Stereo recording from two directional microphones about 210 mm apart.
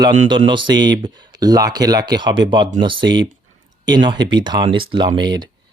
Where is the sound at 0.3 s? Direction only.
25° right (ahead or behind).